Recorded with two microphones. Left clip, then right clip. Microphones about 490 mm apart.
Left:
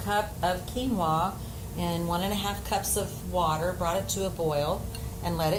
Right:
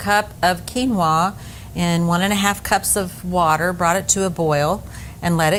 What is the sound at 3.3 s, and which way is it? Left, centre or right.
A woman's voice, right.